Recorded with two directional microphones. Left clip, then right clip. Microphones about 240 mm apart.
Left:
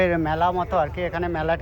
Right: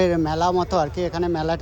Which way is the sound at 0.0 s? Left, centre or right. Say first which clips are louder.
Right 1 dB; centre.